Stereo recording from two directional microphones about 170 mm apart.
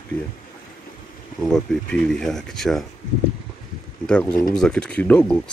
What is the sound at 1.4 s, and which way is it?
Speech, 5° left (ahead or behind).